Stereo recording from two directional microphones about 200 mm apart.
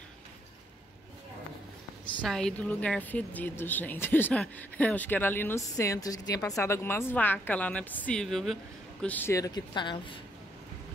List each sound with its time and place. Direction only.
2.2 s speech: centre (ahead or behind); by 10.2 s 25° left (ahead or behind)